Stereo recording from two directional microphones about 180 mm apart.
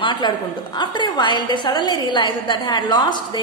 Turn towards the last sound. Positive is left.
turn(degrees=25)  # may be behind; listen again after turning